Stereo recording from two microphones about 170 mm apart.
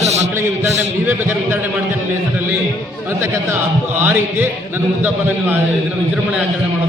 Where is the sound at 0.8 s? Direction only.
15° right (ahead or behind).